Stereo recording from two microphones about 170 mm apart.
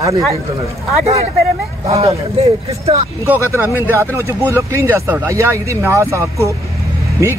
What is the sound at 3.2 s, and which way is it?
Speech, 10° right (ahead or behind).